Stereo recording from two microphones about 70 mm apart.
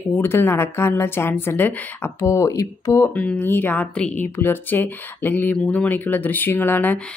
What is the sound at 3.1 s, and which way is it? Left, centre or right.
Speech, left.